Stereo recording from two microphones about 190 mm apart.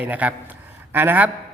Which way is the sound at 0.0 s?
10° right (ahead or behind).